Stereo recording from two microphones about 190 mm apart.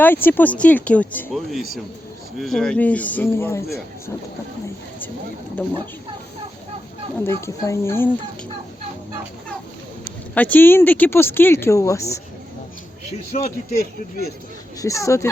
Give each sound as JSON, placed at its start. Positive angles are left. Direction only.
{"t": 0.0, "sound": "speech", "side_deg": 10}
{"t": 5.6, "sound": "speech", "side_deg": 10}
{"t": 7.2, "sound": "speech", "side_deg": 15}
{"t": 10.3, "sound": "speech", "side_deg": 10}
{"t": 13.3, "sound": "a man's voice", "side_deg": 45}
{"t": 14.8, "sound": "speech", "side_deg": 15}